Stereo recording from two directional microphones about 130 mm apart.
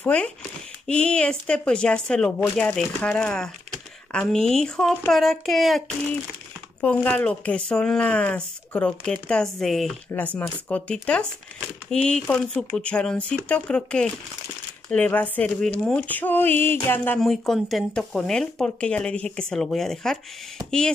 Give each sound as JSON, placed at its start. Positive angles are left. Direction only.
{"t": 0.0, "sound": "speech", "side_deg": 10}
{"t": 10.1, "sound": "speech", "side_deg": 10}
{"t": 17.2, "sound": "speech", "side_deg": 0}